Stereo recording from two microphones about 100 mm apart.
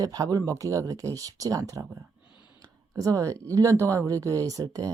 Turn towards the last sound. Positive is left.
turn(degrees=-35)  # may be behind; listen again after turning